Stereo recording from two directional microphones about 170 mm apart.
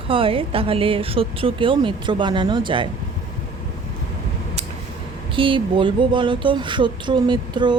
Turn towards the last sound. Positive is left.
turn(degrees=-25)  # may be behind; listen again after turning